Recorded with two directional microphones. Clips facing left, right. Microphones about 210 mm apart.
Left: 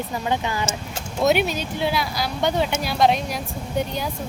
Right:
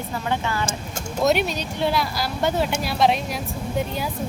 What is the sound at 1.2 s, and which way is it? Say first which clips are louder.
Speech: left 1 dB; centre (ahead or behind).